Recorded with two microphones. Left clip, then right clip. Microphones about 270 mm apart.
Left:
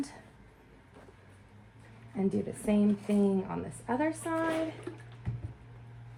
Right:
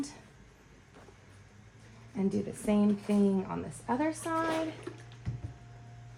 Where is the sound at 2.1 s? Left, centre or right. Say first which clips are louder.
Left 1 dB; centre.